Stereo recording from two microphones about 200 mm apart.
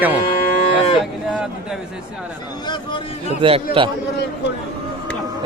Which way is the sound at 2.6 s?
25° left (ahead or behind).